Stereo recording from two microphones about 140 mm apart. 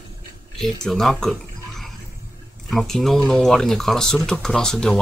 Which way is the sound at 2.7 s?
Centre (ahead or behind).